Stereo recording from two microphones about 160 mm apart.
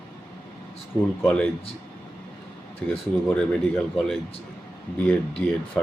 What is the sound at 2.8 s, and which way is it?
Speech, 5° left (ahead or behind).